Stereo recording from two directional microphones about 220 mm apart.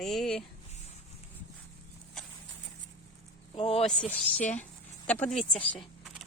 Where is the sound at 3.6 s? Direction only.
25° left (ahead or behind).